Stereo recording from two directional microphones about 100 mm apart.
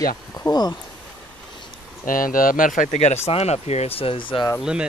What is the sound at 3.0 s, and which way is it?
Speech, 90° left.